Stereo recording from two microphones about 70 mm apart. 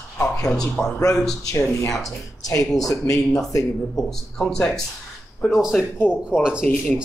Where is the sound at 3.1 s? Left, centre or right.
Centre.